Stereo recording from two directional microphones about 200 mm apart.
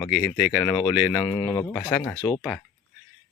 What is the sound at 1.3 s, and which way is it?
Speech, 20° left (ahead or behind).